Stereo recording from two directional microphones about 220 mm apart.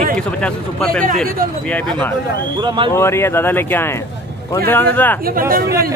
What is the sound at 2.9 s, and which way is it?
Speech, 10° left (ahead or behind).